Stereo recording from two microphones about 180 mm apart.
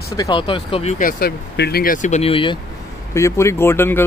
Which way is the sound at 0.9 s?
55° left (ahead or behind).